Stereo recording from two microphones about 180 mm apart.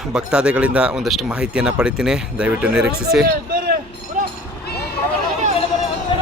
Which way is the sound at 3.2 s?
55° right (ahead or behind).